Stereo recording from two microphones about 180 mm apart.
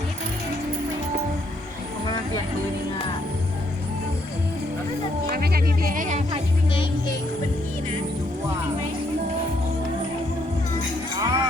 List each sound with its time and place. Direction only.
5.3 s music: 55° right (ahead or behind)
11.2 s music: 20° right (ahead or behind)